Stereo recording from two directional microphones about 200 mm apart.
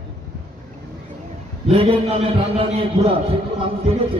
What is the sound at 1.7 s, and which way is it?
Speech, 30° right (ahead or behind).